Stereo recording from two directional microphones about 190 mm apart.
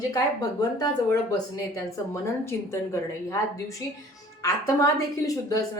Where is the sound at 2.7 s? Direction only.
15° left (ahead or behind).